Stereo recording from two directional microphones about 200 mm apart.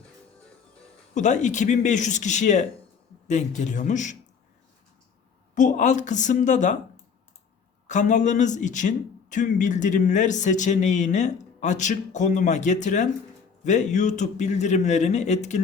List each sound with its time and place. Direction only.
1.1 s speech: 35° left (ahead or behind)
5.5 s speech: 40° left (ahead or behind)
7.9 s speech: 35° left (ahead or behind)